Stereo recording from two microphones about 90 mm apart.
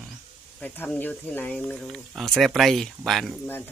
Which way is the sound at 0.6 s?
20° left (ahead or behind).